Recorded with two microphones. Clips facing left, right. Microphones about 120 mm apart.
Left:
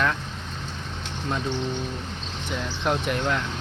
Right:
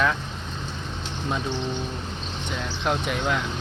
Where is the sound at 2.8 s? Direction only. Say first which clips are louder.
Even; centre (ahead or behind).